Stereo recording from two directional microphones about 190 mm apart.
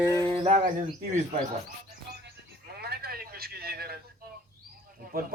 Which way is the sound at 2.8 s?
55° right (ahead or behind).